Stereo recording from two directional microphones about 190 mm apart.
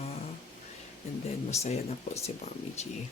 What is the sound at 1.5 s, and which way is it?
Speech, 35° left (ahead or behind).